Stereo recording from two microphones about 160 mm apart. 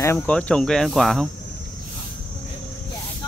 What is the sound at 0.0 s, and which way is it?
Speech, 10° left (ahead or behind).